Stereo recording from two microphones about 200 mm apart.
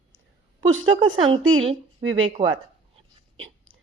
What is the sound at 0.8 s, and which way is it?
Speech, 25° right (ahead or behind).